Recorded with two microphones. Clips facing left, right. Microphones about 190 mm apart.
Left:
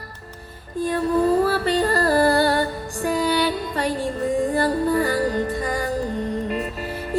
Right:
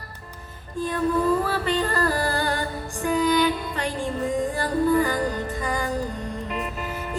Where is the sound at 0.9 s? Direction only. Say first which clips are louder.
Left 3 dB; 35° left (ahead or behind).